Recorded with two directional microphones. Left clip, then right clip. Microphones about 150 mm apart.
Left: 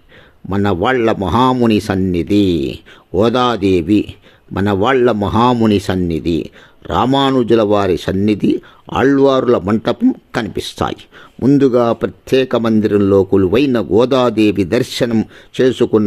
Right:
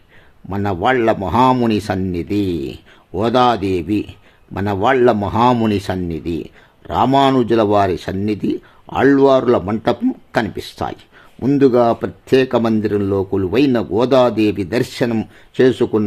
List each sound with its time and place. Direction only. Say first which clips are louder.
0.4 s speech: left 2 dB; 20° left (ahead or behind)
11.3 s speech: left 5 dB; 20° left (ahead or behind)
11.6 s speech: right 4 dB; 30° left (ahead or behind)